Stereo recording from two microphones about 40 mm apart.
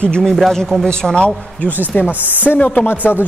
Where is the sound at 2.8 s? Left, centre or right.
Left.